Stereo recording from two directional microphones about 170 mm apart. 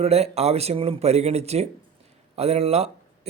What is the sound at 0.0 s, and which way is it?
Speech, 35° right (ahead or behind).